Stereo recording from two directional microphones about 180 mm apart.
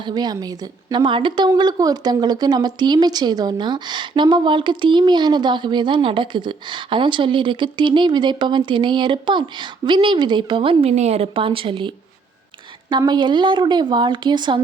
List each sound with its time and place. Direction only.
0.0 s a woman's voice: 25° right (ahead or behind)